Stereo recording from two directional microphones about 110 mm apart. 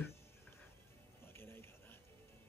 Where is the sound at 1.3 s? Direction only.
20° left (ahead or behind).